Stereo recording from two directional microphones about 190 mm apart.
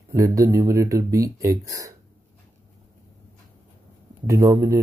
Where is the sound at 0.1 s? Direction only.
15° right (ahead or behind).